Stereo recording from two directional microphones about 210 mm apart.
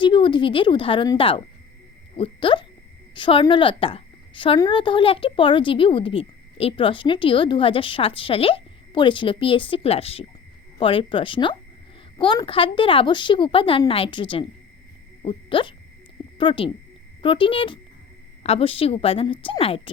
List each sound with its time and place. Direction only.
0.0 s a woman's voice: 25° left (ahead or behind)